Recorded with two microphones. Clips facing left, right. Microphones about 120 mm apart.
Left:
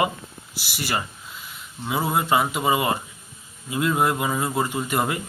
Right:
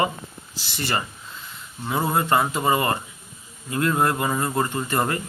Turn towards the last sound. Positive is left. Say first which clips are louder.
# even
turn(degrees=5)  # may be behind; listen again after turning